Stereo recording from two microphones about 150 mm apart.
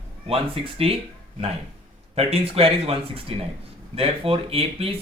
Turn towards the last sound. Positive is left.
turn(degrees=-40)  # may be behind; listen again after turning